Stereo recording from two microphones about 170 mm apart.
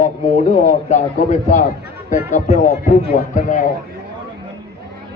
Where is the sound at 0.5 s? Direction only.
45° left (ahead or behind).